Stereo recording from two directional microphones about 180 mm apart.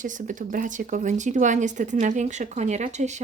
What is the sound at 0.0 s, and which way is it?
Speech, 45° right (ahead or behind).